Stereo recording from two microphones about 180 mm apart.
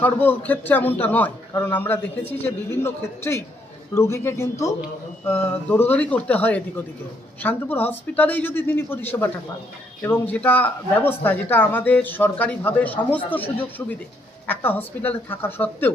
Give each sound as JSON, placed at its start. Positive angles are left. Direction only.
{"t": 0.0, "sound": "a man's voice", "side_deg": 10}